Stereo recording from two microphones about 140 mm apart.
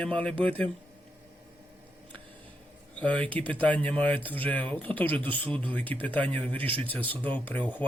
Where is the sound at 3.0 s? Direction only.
10° left (ahead or behind).